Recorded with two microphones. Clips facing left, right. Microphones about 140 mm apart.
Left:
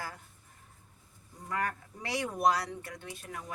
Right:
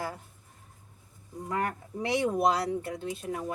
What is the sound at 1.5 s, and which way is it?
Speech, 20° right (ahead or behind).